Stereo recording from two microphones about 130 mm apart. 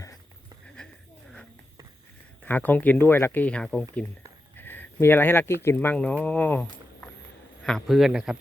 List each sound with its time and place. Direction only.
0.8 s a sound: 5° left (ahead or behind)
2.5 s speech: 15° left (ahead or behind)
4.5 s speech: 15° left (ahead or behind); by 8.4 s 5° right (ahead or behind)